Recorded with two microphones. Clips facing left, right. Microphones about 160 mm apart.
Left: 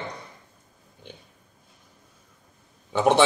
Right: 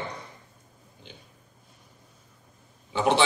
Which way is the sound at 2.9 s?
50° left (ahead or behind).